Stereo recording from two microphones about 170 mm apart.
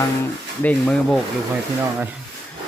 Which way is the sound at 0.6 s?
5° left (ahead or behind).